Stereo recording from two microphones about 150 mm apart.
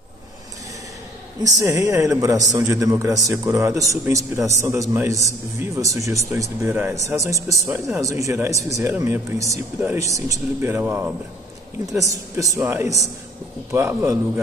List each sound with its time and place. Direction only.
1.4 s a man's voice: 20° right (ahead or behind)